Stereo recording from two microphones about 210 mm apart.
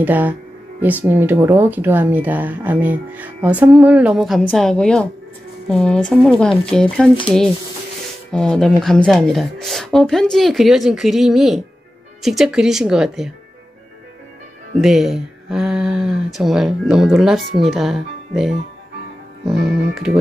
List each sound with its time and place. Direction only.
0.0 s speech: 10° right (ahead or behind)
14.8 s speech: centre (ahead or behind)